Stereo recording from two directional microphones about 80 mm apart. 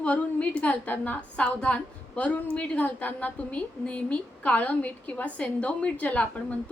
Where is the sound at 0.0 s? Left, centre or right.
Centre.